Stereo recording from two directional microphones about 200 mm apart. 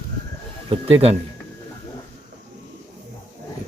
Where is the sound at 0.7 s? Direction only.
30° right (ahead or behind).